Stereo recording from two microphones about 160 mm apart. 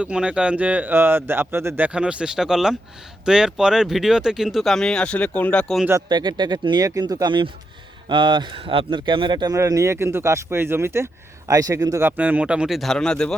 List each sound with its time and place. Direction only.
0.0 s speech: 5° right (ahead or behind)
6.1 s speech: 25° right (ahead or behind); by 13.3 s 5° left (ahead or behind)